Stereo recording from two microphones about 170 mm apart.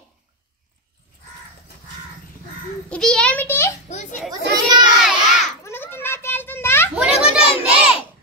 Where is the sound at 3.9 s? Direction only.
45° left (ahead or behind).